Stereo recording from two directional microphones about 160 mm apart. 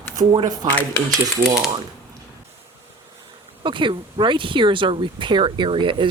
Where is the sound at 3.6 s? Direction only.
30° right (ahead or behind).